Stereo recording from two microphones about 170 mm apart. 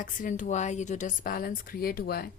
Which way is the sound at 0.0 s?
50° left (ahead or behind).